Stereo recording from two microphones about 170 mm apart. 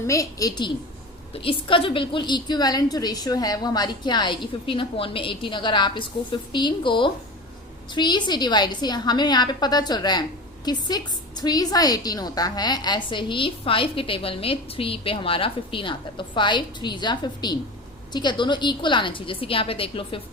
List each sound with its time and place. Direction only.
0.1 s a woman's voice: 20° left (ahead or behind)